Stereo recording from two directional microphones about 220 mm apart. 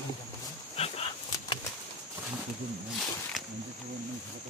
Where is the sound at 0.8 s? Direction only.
30° left (ahead or behind).